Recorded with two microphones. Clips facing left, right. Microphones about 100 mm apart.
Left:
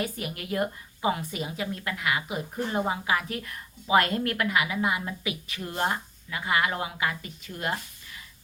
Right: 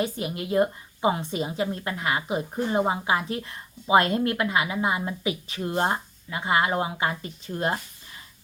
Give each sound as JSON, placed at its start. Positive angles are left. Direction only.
{"t": 0.0, "sound": "a woman's voice", "side_deg": -25}